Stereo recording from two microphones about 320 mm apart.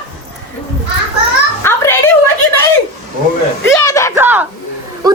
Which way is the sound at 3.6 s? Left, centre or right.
Centre.